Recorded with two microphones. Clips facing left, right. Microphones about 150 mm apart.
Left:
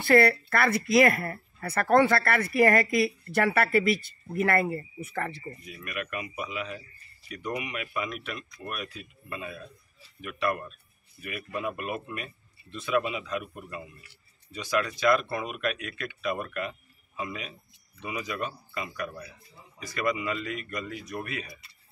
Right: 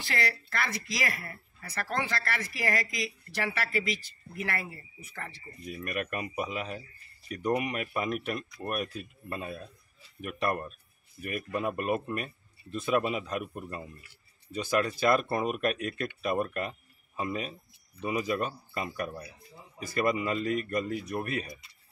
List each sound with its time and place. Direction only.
0.0 s speech: 55° left (ahead or behind)
5.7 s speech: 40° right (ahead or behind)